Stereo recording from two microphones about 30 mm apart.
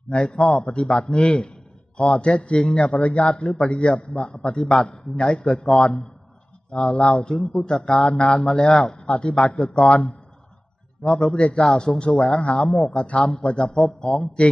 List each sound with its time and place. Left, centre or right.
0.1 s a man's voice: left
7.3 s speech: left
8.0 s a man's voice: left
8.4 s a man's voice: left